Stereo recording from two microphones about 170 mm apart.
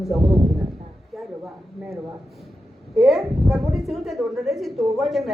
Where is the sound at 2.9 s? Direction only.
Centre (ahead or behind).